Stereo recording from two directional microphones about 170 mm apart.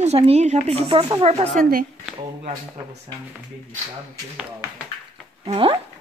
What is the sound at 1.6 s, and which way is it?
Speech, 55° right (ahead or behind).